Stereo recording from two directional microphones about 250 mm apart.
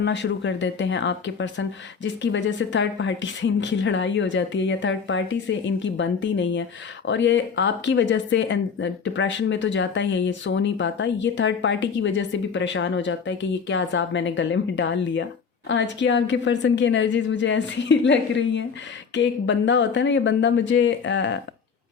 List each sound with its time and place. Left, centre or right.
0.0 s speech: left